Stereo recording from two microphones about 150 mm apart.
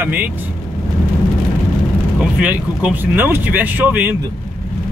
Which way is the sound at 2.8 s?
10° right (ahead or behind).